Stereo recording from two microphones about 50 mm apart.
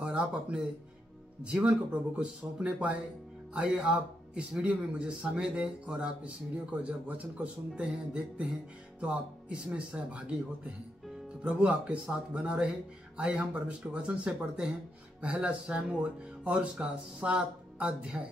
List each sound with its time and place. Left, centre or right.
0.0 s speech: centre
11.4 s speech: right